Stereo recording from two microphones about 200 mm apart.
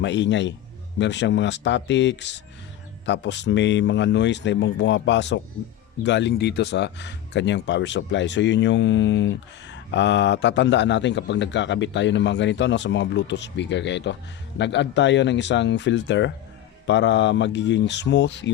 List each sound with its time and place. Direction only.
0.0 s speech: 60° left (ahead or behind)